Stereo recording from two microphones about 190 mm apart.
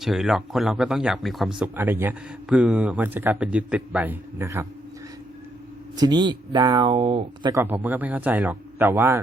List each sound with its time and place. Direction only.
0.0 s a man's voice: centre (ahead or behind)
6.0 s speech: 20° right (ahead or behind)
7.5 s a man's voice: 10° right (ahead or behind)